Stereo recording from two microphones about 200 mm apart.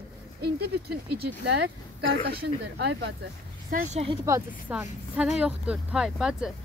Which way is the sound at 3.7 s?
30° right (ahead or behind).